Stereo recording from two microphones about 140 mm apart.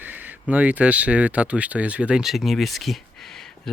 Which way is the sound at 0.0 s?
10° right (ahead or behind).